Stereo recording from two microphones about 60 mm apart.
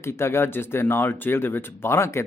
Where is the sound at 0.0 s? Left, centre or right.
Left.